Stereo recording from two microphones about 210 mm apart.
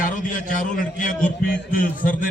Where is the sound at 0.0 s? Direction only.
40° left (ahead or behind).